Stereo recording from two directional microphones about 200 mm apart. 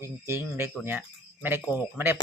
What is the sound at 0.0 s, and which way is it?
Speech, 10° right (ahead or behind).